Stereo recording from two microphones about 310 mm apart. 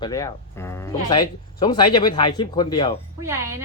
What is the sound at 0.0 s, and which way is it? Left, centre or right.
Speech, centre.